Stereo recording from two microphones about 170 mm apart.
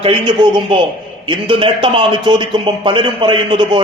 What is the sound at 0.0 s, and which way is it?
A man's voice, 30° right (ahead or behind).